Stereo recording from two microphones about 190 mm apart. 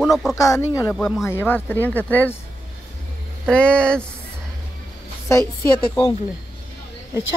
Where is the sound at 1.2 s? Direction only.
10° left (ahead or behind).